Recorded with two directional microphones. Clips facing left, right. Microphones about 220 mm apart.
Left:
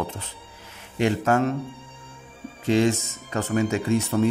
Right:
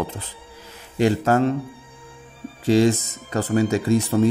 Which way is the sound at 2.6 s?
35° right (ahead or behind).